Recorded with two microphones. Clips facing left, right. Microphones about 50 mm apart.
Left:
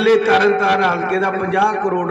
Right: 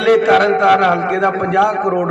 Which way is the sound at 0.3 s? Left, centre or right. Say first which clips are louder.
Right 3 dB; right.